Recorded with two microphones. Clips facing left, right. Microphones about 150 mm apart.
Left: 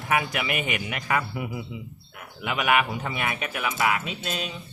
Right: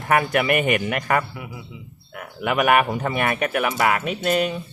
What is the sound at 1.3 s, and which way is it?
Speech, 20° left (ahead or behind).